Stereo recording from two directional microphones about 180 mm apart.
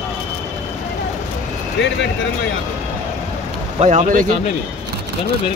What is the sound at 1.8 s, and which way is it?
Speech, 80° left.